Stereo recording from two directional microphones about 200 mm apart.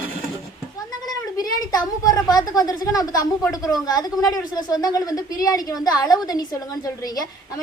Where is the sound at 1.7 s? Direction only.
20° left (ahead or behind).